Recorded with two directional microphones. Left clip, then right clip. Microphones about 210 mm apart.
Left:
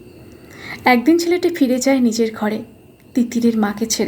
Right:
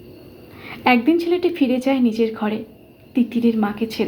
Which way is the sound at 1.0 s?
25° left (ahead or behind).